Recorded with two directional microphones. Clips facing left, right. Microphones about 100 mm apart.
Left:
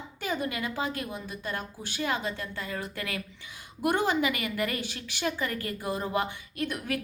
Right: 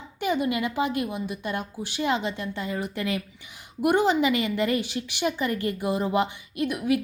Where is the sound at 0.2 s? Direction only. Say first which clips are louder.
Right 7 dB; 20° right (ahead or behind).